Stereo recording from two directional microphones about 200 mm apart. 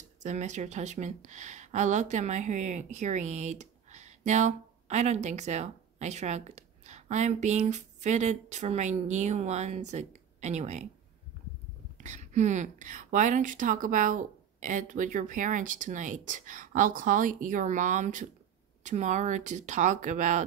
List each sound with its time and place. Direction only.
0.2 s speech: 35° right (ahead or behind)
12.0 s speech: 35° right (ahead or behind)